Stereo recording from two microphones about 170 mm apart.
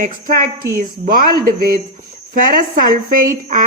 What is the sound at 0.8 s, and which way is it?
A woman's voice, 55° right (ahead or behind).